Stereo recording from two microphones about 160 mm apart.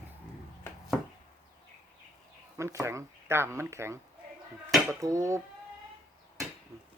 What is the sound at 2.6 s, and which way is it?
Speech, 20° right (ahead or behind).